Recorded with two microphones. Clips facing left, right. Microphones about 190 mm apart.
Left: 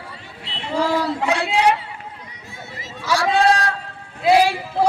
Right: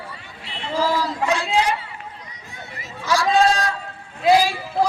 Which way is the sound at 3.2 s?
65° left (ahead or behind).